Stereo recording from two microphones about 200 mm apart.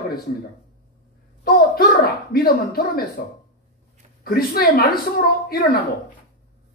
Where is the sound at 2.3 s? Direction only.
50° left (ahead or behind).